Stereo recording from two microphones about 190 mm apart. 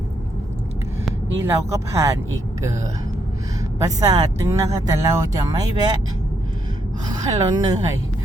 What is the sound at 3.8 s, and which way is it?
Speech, 20° right (ahead or behind).